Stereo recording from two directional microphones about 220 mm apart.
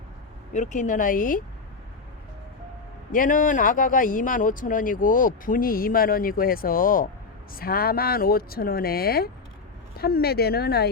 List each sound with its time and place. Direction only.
0.5 s speech: 35° left (ahead or behind)
3.1 s speech: 40° left (ahead or behind)